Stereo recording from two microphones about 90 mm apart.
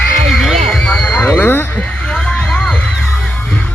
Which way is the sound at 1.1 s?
20° left (ahead or behind).